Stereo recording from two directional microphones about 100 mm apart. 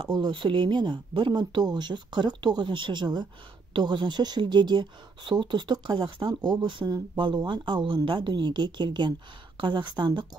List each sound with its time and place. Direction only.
0.0 s speech: 50° right (ahead or behind)
6.2 s speech: 40° right (ahead or behind)